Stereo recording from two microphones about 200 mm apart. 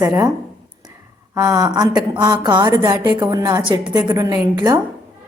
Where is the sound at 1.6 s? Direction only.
20° right (ahead or behind).